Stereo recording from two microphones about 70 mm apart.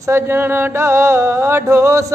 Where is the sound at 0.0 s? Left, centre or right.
Right.